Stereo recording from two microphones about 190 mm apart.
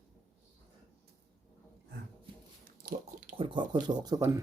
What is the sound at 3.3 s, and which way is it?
Speech, 25° right (ahead or behind).